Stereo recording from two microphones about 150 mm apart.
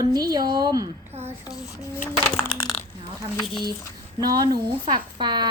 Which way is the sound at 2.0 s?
10° right (ahead or behind).